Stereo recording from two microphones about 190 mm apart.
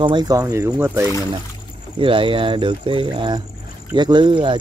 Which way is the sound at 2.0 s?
25° right (ahead or behind).